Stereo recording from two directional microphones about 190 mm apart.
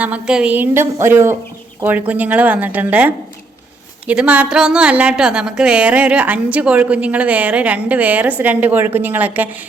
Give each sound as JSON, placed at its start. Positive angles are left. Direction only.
{"t": 0.0, "sound": "a woman's voice", "side_deg": -5}